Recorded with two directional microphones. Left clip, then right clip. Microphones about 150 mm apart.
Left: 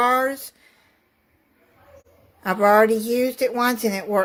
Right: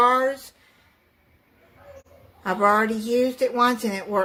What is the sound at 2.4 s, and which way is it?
A woman's voice, 50° left (ahead or behind).